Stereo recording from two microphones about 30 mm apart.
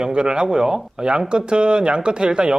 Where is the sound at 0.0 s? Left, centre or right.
Right.